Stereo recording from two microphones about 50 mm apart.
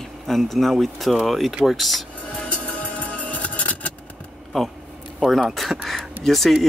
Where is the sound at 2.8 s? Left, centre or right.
Left.